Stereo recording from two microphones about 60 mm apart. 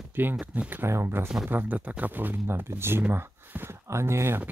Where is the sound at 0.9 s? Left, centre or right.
Right.